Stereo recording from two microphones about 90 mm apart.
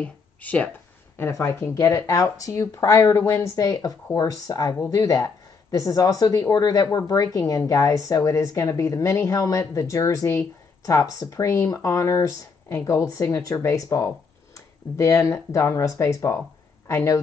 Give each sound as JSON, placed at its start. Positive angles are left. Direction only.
{"t": 0.0, "sound": "speech", "side_deg": 15}
{"t": 1.1, "sound": "speech", "side_deg": 25}
{"t": 3.5, "sound": "speech", "side_deg": 40}